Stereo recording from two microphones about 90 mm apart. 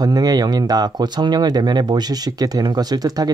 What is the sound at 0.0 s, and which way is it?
Speech, 45° right (ahead or behind).